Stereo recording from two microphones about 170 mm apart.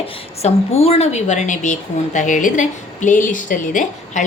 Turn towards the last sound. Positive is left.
turn(degrees=50)  # may be behind; listen again after turning